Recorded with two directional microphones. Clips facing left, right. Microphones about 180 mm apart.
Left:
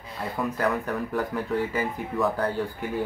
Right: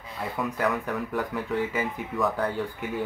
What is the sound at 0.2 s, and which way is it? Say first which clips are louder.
Speech: left 1 dB; centre (ahead or behind).